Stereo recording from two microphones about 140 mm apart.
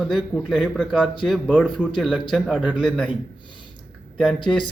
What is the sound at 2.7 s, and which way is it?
Speech, 5° left (ahead or behind).